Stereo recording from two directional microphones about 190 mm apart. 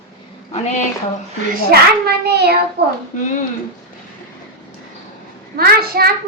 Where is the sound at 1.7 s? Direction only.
55° right (ahead or behind).